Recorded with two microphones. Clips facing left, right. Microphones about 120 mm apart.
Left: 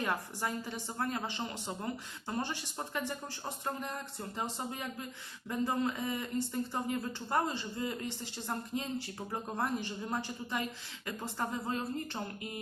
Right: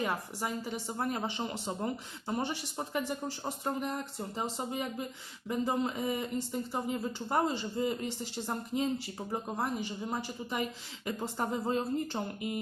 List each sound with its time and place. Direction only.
0.0 s a woman's voice: 10° right (ahead or behind)
8.4 s a woman's voice: 15° right (ahead or behind)
11.0 s speech: 20° right (ahead or behind)